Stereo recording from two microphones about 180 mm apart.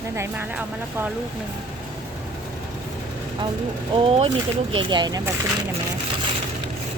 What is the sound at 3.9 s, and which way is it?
Speech, 30° right (ahead or behind).